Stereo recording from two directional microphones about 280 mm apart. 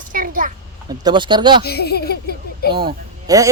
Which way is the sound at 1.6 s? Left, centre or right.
Left.